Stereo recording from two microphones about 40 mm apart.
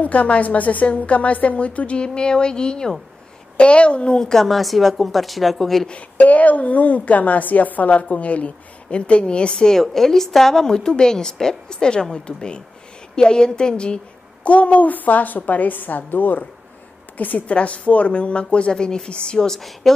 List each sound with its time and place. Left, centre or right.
0.0 s a woman's voice: left
2.0 s a woman's voice: left
4.2 s a woman's voice: centre
5.9 s a woman's voice: left
9.8 s a woman's voice: centre
14.4 s a woman's voice: left; by 19.6 s centre